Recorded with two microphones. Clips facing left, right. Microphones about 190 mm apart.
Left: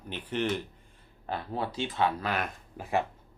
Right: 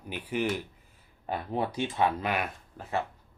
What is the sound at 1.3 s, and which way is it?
Speech, 20° right (ahead or behind).